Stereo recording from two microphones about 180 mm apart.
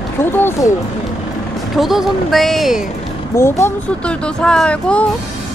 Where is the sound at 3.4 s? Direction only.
15° left (ahead or behind).